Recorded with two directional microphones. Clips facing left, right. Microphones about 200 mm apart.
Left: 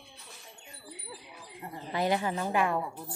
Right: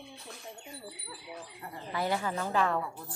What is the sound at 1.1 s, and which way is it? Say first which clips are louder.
Speech: right 2 dB; 20° left (ahead or behind).